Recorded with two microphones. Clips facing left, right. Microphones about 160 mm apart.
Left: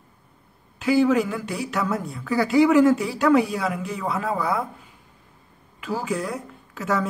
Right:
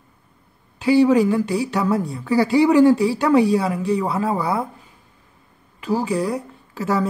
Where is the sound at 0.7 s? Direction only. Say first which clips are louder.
Right 4 dB; 35° right (ahead or behind).